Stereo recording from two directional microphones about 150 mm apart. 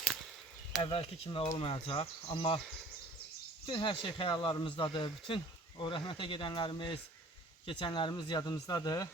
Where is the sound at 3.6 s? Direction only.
35° left (ahead or behind).